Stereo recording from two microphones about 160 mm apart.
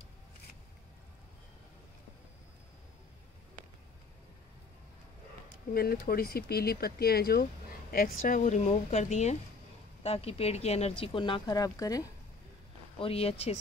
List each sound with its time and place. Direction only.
5.7 s speech: 70° left (ahead or behind)
7.9 s a woman's voice: 60° left (ahead or behind); by 12.1 s 20° left (ahead or behind)
13.0 s speech: 35° left (ahead or behind)